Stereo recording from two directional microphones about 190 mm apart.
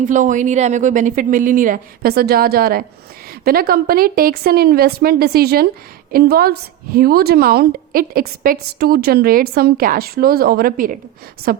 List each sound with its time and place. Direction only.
0.0 s a woman's voice: 40° right (ahead or behind)